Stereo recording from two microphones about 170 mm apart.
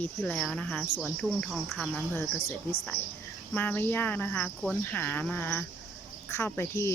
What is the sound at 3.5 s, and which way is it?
Speech, 10° left (ahead or behind).